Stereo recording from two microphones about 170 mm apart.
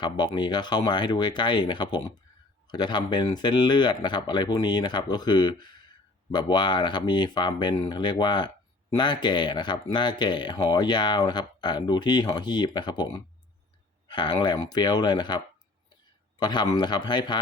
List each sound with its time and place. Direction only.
0.0 s speech: 25° left (ahead or behind)
16.4 s speech: 25° left (ahead or behind)